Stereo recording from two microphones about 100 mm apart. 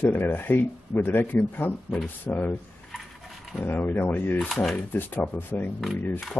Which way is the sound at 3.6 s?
20° left (ahead or behind).